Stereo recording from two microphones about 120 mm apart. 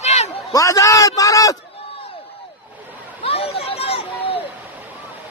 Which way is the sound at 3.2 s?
55° left (ahead or behind).